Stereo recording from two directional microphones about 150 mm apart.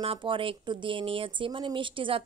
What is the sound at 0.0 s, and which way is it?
A woman's voice, 35° right (ahead or behind).